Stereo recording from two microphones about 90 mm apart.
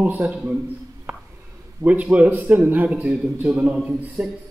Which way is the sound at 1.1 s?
15° right (ahead or behind).